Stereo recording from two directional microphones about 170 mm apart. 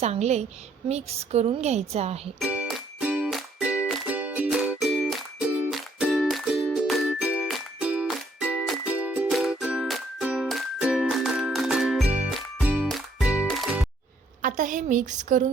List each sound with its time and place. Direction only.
0.0 s a woman's voice: 40° right (ahead or behind)
2.4 s music: 5° right (ahead or behind)
14.4 s a sound: 50° right (ahead or behind)